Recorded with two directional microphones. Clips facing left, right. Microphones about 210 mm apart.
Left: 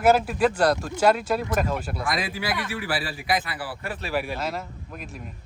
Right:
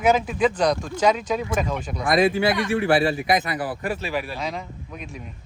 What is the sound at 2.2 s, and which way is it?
Speech, 25° right (ahead or behind).